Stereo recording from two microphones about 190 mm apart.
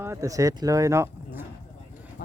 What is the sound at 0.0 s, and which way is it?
Speech, 15° right (ahead or behind).